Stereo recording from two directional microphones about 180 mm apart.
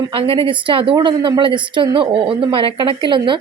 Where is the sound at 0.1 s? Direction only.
30° right (ahead or behind).